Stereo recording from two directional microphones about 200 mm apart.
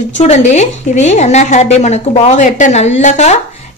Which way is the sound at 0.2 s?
35° left (ahead or behind).